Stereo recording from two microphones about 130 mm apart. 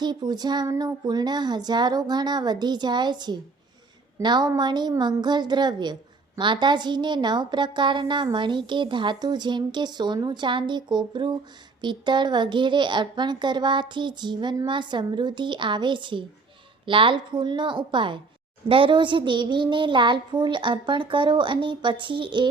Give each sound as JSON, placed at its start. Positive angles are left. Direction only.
{"t": 0.0, "sound": "a woman's voice", "side_deg": -35}